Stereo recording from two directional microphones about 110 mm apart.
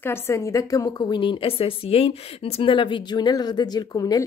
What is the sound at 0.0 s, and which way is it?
A woman's voice, 25° left (ahead or behind).